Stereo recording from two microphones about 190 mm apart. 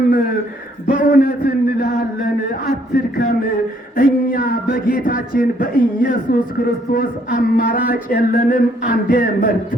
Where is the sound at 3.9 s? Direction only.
50° left (ahead or behind).